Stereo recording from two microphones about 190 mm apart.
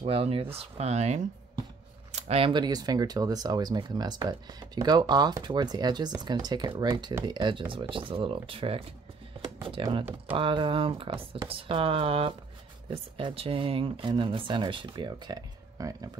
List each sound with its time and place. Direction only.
0.0 s speech: 30° right (ahead or behind)